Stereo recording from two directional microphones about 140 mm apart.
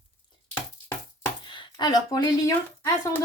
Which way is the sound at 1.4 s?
35° left (ahead or behind).